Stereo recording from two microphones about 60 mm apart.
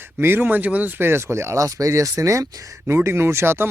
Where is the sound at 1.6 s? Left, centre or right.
Right.